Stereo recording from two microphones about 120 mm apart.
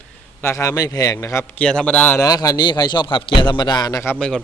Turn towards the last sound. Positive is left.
turn(degrees=5)  # may be behind; listen again after turning